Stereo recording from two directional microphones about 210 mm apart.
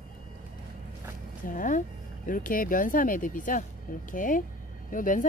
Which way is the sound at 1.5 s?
40° left (ahead or behind).